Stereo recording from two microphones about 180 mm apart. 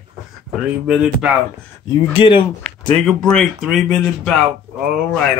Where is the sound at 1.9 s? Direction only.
30° left (ahead or behind).